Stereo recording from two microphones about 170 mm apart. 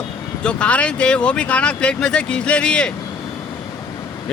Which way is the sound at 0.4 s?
5° left (ahead or behind).